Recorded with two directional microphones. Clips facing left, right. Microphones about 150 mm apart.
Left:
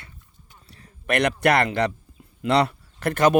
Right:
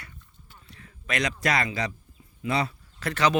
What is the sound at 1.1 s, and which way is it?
Speech, 60° left (ahead or behind).